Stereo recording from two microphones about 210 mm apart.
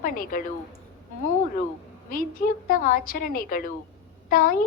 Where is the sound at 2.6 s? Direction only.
40° left (ahead or behind).